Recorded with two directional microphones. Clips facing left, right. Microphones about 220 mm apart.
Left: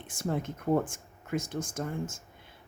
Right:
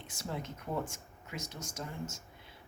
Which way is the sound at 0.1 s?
50° left (ahead or behind).